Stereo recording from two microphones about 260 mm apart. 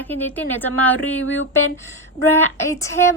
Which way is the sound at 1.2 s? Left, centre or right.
Left.